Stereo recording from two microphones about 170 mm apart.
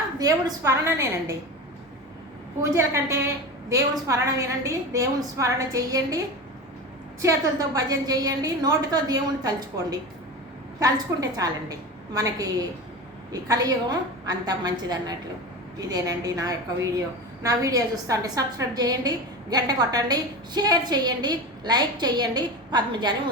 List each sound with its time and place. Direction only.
0.2 s a woman's voice: 20° right (ahead or behind)
2.6 s a woman's voice: 15° right (ahead or behind)
7.2 s a woman's voice: 20° right (ahead or behind)
10.8 s a woman's voice: 20° right (ahead or behind)